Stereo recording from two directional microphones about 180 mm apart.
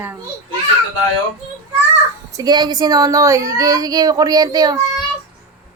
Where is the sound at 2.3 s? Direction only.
20° right (ahead or behind).